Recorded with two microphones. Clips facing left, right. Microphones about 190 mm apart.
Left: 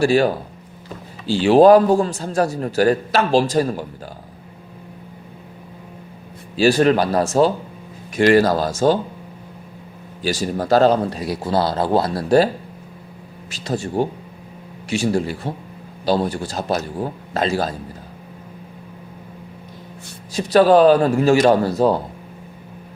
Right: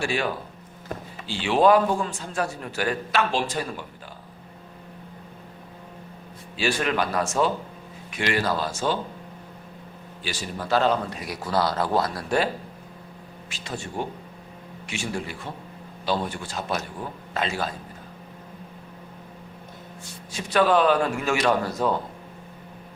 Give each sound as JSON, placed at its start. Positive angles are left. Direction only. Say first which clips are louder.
{"t": 0.0, "sound": "a man's voice", "louder": "left 11 dB", "side_deg": 40}
{"t": 6.6, "sound": "a man's voice", "louder": "left 10 dB", "side_deg": 35}
{"t": 10.2, "sound": "a man's voice", "louder": "left 10 dB", "side_deg": 40}
{"t": 13.5, "sound": "a man's voice", "louder": "left 10 dB", "side_deg": 40}
{"t": 20.3, "sound": "a man's voice", "louder": "left 8 dB", "side_deg": 35}